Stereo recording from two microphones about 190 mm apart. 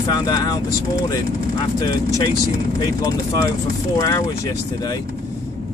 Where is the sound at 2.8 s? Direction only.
20° left (ahead or behind).